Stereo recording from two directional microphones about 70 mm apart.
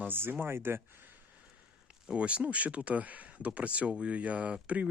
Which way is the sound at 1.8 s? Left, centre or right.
Centre.